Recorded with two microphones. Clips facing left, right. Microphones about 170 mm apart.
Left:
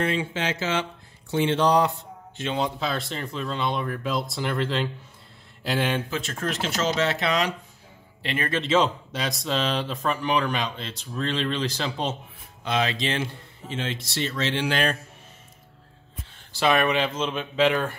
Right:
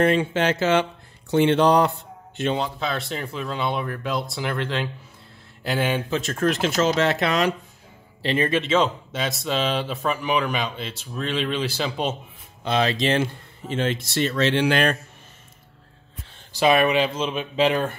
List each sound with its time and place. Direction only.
0.0 s speech: 55° right (ahead or behind)
2.8 s speech: centre (ahead or behind)
6.4 s speech: 55° right (ahead or behind)
8.2 s a man's voice: 35° right (ahead or behind)
8.6 s speech: centre (ahead or behind)
12.6 s speech: 35° right (ahead or behind); by 15.0 s 65° right (ahead or behind)
16.5 s speech: 10° right (ahead or behind)